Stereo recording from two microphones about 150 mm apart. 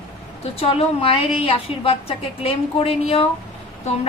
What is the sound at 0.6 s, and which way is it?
A woman's voice, 40° left (ahead or behind).